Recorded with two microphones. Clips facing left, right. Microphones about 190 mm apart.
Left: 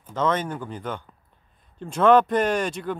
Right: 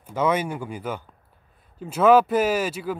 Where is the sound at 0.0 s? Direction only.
10° right (ahead or behind).